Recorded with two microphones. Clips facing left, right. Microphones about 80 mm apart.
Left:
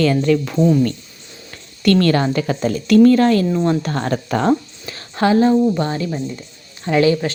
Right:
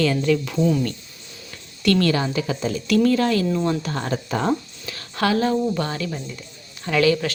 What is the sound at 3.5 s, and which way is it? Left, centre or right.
Speech, left.